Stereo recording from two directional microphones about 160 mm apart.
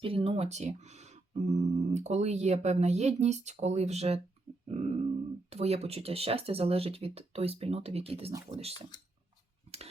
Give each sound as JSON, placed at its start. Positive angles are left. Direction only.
{"t": 0.0, "sound": "speech", "side_deg": -35}